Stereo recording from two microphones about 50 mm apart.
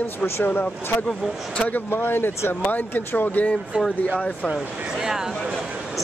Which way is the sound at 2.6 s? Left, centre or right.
Left.